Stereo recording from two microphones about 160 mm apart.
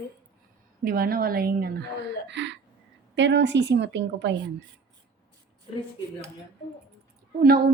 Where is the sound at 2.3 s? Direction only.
90° right.